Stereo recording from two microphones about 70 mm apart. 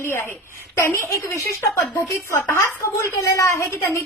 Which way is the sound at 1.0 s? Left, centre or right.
Left.